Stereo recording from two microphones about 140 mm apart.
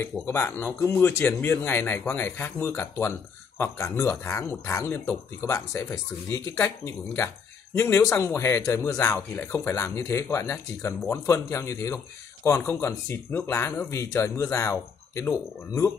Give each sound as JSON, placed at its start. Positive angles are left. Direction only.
{"t": 0.3, "sound": "a man's voice", "side_deg": 15}